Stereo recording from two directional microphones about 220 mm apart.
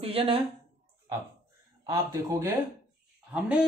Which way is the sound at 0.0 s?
25° right (ahead or behind).